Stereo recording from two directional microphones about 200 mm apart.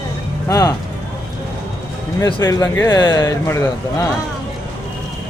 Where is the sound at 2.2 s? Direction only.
15° left (ahead or behind).